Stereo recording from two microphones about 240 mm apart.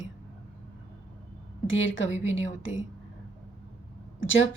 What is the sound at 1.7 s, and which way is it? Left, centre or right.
Speech, left.